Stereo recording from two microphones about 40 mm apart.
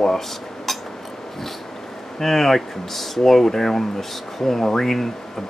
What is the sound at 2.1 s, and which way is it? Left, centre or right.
Speech, centre.